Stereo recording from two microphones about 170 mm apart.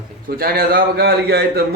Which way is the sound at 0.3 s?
65° right (ahead or behind).